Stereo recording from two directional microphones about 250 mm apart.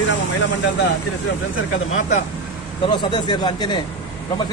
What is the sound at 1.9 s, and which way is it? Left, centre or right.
A man's voice, left.